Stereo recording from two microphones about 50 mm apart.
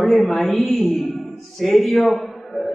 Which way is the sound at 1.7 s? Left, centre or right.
Left.